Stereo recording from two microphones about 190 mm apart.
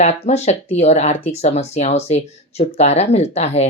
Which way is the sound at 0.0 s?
35° left (ahead or behind).